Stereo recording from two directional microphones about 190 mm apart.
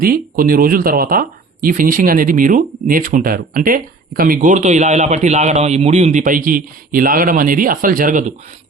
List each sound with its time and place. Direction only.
0.0 s speech: 50° right (ahead or behind)